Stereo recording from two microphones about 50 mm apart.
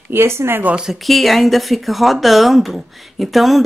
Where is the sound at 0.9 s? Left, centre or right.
Centre.